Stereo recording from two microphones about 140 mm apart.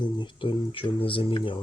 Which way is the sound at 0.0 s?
35° left (ahead or behind).